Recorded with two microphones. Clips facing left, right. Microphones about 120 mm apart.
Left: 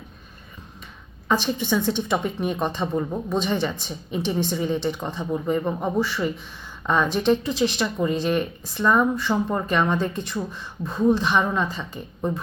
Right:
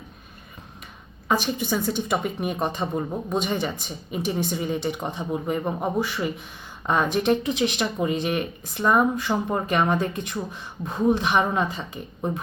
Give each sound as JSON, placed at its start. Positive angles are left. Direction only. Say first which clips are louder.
{"t": 1.3, "sound": "speech", "louder": "left 1 dB", "side_deg": -10}